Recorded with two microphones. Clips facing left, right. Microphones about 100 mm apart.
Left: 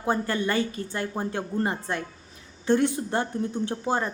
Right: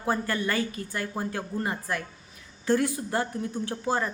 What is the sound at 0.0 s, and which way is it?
Speech, 20° left (ahead or behind).